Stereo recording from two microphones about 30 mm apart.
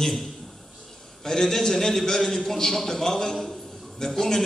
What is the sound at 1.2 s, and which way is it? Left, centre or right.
A man's voice, centre.